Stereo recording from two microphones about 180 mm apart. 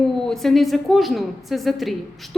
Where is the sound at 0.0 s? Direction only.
Centre (ahead or behind).